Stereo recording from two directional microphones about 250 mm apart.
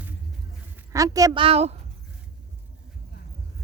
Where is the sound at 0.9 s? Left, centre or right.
Centre.